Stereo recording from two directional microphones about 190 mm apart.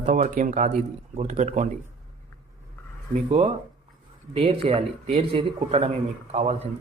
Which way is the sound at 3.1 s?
40° right (ahead or behind).